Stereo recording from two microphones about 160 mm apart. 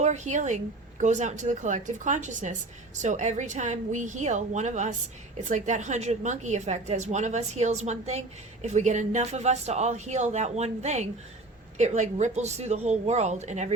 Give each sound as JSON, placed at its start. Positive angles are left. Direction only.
{"t": 0.0, "sound": "speech", "side_deg": -50}